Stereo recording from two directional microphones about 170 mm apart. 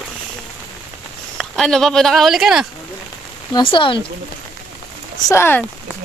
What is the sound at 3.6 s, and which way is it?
Speech, 30° left (ahead or behind).